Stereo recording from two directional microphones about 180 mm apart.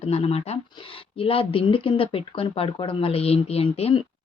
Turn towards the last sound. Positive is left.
turn(degrees=35)  # may be behind; listen again after turning